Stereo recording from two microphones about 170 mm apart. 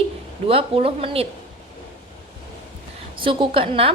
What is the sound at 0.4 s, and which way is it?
Speech, 35° right (ahead or behind).